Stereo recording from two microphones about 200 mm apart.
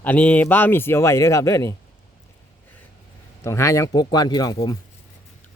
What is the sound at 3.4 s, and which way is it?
Speech, 15° left (ahead or behind).